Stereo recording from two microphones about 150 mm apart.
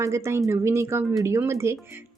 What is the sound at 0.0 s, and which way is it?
Speech, 20° right (ahead or behind).